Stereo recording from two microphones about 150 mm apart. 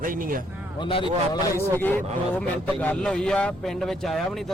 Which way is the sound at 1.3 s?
15° left (ahead or behind).